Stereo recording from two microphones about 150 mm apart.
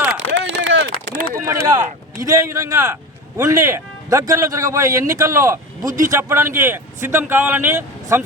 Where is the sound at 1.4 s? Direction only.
25° right (ahead or behind).